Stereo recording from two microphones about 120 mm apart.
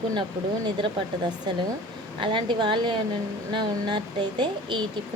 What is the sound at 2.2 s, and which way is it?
A woman's voice, 40° right (ahead or behind).